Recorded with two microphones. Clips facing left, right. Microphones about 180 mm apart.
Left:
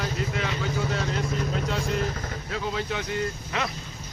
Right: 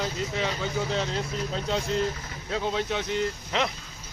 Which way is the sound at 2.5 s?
20° right (ahead or behind).